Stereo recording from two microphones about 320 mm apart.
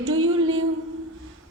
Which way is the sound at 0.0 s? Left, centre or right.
Right.